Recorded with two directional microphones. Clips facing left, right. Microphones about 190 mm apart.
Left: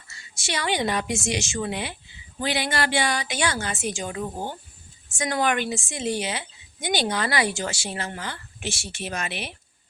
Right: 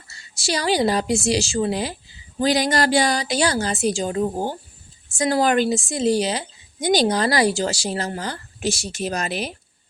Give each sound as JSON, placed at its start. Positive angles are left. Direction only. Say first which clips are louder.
{"t": 0.1, "sound": "a woman's voice", "louder": "right 6 dB", "side_deg": -35}